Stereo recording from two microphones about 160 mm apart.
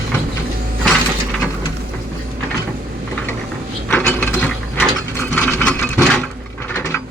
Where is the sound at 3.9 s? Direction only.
10° left (ahead or behind).